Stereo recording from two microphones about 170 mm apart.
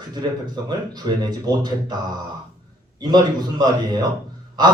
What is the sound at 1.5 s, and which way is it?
Speech, 25° right (ahead or behind).